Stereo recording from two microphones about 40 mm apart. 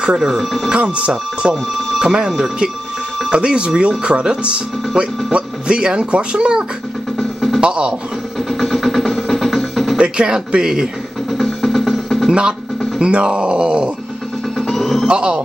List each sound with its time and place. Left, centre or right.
0.2 s speech: centre
0.7 s speech: right
2.0 s speech: centre
7.2 s music: centre
7.6 s speech: right
8.5 s music: centre
9.9 s speech: right
11.2 s music: centre
12.3 s speech: right
14.6 s music: centre
15.0 s speech: right